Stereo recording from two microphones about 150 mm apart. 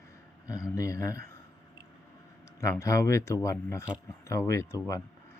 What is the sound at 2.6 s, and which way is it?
Speech, 20° left (ahead or behind).